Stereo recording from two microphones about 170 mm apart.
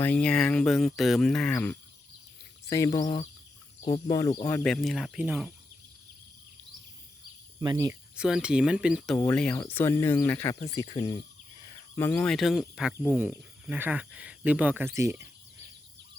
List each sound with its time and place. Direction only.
0.0 s speech: 5° left (ahead or behind)
2.6 s speech: 20° left (ahead or behind)
4.6 s speech: centre (ahead or behind)
7.6 s speech: 20° right (ahead or behind)
8.1 s speech: 5° right (ahead or behind)
9.1 s speech: 10° left (ahead or behind)
10.8 s speech: 35° left (ahead or behind)
11.9 s speech: 15° left (ahead or behind)
12.3 s speech: centre (ahead or behind)